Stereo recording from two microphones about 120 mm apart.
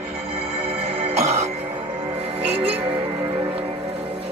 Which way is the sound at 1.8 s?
45° right (ahead or behind).